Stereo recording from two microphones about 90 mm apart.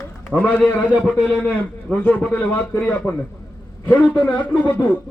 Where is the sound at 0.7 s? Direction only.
15° left (ahead or behind).